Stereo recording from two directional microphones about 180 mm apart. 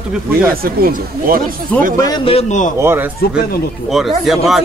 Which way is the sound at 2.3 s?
40° left (ahead or behind).